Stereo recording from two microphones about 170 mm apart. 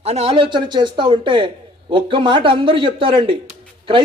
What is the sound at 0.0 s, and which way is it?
Speech, 35° right (ahead or behind).